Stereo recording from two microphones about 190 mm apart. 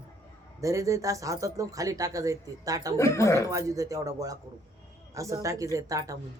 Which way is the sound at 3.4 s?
15° right (ahead or behind).